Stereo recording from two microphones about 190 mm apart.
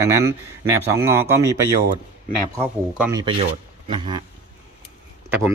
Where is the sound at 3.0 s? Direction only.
15° right (ahead or behind).